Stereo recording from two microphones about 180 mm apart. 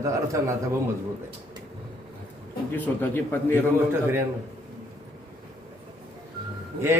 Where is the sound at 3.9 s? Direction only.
15° right (ahead or behind).